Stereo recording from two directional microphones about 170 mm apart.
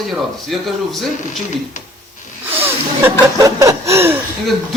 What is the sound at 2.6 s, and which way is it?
Speech, 15° right (ahead or behind).